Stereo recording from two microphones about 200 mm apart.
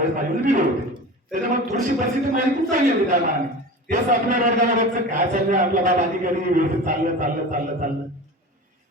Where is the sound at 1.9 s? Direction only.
40° right (ahead or behind).